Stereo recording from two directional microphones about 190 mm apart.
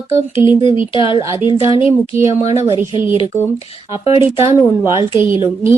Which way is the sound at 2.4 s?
35° left (ahead or behind).